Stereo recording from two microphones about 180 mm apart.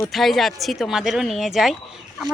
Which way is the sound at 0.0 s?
Centre (ahead or behind).